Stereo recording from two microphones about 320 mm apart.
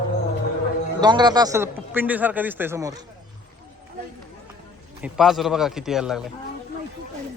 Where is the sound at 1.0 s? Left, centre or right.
Centre.